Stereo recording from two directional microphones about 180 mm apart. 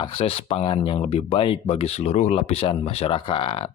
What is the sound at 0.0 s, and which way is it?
Speech, 35° left (ahead or behind).